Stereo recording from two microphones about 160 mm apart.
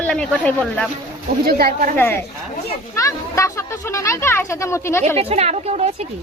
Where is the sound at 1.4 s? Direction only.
70° right (ahead or behind).